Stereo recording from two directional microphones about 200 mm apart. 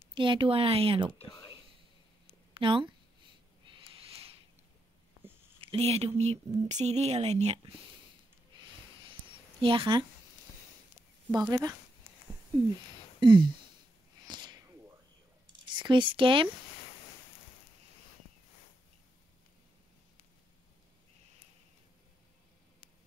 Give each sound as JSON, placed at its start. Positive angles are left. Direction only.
{"t": 0.1, "sound": "speech", "side_deg": -25}
{"t": 1.3, "sound": "a sound", "side_deg": 20}
{"t": 2.5, "sound": "speech", "side_deg": -25}
{"t": 3.6, "sound": "owl", "side_deg": -25}
{"t": 5.6, "sound": "speech", "side_deg": -30}
{"t": 9.6, "sound": "speech", "side_deg": -25}
{"t": 11.3, "sound": "speech", "side_deg": -20}
{"t": 13.2, "sound": "speech", "side_deg": -25}
{"t": 14.2, "sound": "a sound", "side_deg": -20}
{"t": 15.7, "sound": "speech", "side_deg": -25}